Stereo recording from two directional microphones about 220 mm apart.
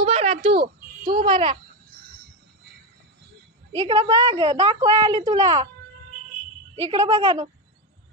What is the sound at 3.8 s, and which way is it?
A woman's voice, 20° right (ahead or behind).